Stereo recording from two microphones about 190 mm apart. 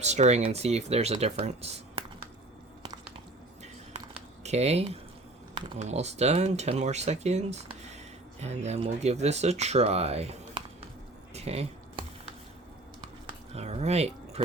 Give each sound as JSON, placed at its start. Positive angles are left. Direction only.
{"t": 0.0, "sound": "speech", "side_deg": -35}
{"t": 3.9, "sound": "a sound", "side_deg": -35}
{"t": 5.5, "sound": "speech", "side_deg": -25}
{"t": 5.8, "sound": "speech", "side_deg": -35}
{"t": 11.3, "sound": "squish", "side_deg": -35}
{"t": 13.5, "sound": "speech", "side_deg": -35}